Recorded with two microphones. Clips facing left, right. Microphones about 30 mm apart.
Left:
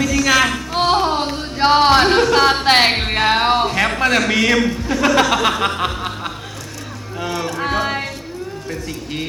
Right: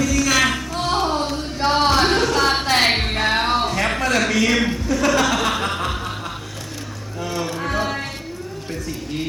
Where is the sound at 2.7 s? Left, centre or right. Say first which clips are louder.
Left 7 dB; left.